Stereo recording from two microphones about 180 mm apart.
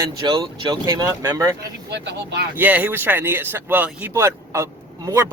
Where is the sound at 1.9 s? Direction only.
65° right (ahead or behind).